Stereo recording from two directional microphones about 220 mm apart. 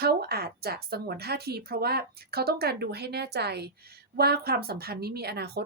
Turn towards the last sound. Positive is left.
turn(degrees=-45)  # may be behind; listen again after turning